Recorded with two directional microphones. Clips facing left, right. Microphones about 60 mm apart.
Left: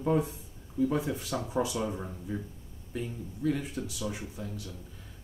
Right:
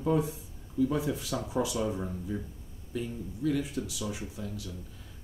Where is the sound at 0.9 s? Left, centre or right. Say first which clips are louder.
Even; left.